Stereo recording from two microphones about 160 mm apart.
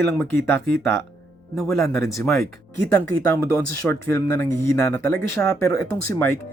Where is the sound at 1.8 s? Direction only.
20° left (ahead or behind).